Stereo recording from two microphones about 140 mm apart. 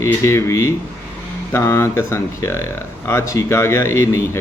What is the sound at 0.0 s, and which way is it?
Speech, 20° left (ahead or behind).